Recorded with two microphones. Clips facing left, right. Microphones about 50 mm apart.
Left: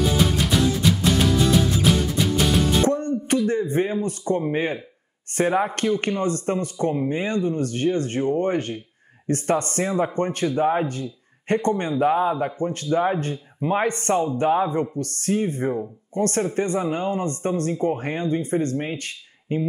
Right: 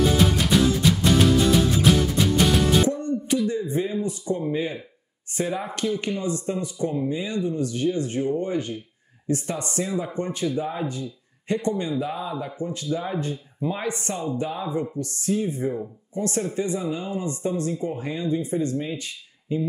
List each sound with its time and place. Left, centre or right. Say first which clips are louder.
0.2 s music: right 1 dB; centre
3.0 s a sound: left 2 dB; left
4.5 s speech: left 2 dB; left